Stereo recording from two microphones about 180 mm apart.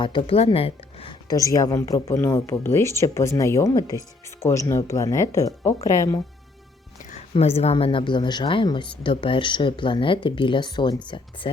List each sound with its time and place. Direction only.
0.0 s a woman's voice: 30° left (ahead or behind)
1.3 s speech: 20° left (ahead or behind)
7.0 s a woman's voice: 40° left (ahead or behind)